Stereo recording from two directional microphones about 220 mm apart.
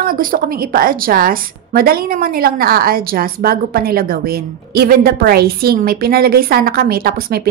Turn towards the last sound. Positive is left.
turn(degrees=-45)  # may be behind; listen again after turning